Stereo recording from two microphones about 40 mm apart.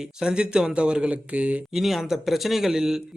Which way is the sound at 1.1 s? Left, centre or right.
Right.